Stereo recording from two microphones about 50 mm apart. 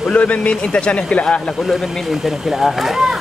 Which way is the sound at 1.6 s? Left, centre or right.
Centre.